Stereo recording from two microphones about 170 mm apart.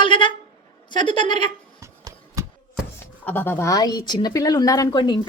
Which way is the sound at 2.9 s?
10° left (ahead or behind).